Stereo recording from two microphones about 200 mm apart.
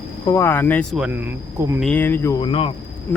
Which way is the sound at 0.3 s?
10° left (ahead or behind).